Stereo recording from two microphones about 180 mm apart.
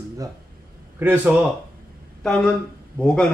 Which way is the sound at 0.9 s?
10° right (ahead or behind).